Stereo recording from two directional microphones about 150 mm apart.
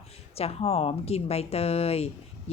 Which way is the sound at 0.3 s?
40° left (ahead or behind).